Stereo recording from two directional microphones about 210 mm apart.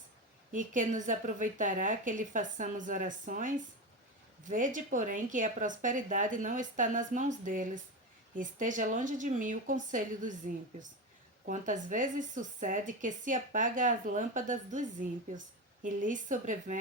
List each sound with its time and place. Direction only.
0.5 s a woman's voice: 40° right (ahead or behind)